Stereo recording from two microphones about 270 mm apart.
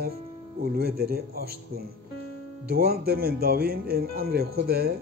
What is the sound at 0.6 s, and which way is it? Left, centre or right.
Speech, right.